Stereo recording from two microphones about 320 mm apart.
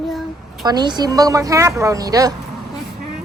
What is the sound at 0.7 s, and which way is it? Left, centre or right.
Speech, centre.